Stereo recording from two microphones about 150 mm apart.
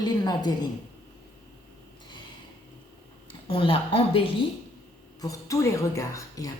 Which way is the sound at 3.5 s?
35° left (ahead or behind).